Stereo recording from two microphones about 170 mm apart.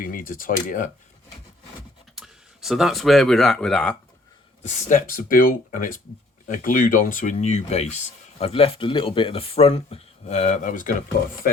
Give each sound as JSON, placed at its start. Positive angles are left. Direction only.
{"t": 0.0, "sound": "speech", "side_deg": 55}
{"t": 2.1, "sound": "speech", "side_deg": -5}
{"t": 4.6, "sound": "speech", "side_deg": 45}
{"t": 5.1, "sound": "speech", "side_deg": 55}